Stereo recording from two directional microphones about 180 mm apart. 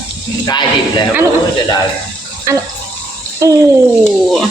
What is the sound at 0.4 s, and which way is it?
Speech, 25° left (ahead or behind).